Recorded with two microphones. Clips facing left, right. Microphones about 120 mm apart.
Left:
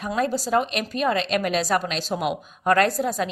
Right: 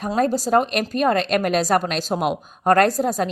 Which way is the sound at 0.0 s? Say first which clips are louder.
Right 4 dB; 40° right (ahead or behind).